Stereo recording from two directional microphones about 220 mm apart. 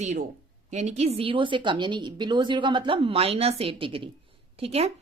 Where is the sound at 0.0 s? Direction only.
30° right (ahead or behind).